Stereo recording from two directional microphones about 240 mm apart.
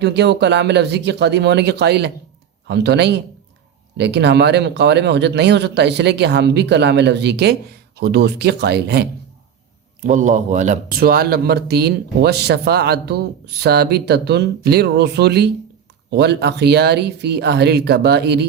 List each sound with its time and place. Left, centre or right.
0.0 s speech: right
10.0 s speech: right